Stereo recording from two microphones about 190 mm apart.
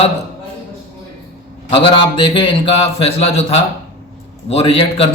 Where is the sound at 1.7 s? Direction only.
25° left (ahead or behind).